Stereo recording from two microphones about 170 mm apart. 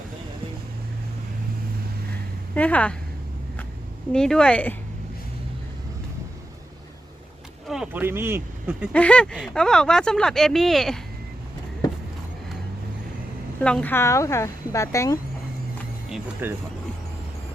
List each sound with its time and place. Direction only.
2.6 s a woman's voice: 10° left (ahead or behind)
4.1 s speech: 5° left (ahead or behind)
7.7 s speech: 5° right (ahead or behind)
8.9 s speech: 5° left (ahead or behind)
13.6 s a woman's voice: 5° left (ahead or behind)
16.0 s speech: 10° right (ahead or behind)